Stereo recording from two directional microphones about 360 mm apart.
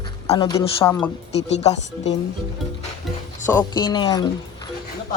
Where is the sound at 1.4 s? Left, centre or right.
Left.